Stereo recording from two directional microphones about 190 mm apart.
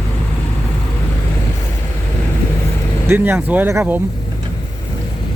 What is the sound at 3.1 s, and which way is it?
Speech, 10° right (ahead or behind).